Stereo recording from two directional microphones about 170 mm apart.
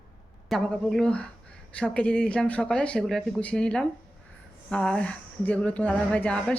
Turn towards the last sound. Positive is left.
turn(degrees=10)  # may be behind; listen again after turning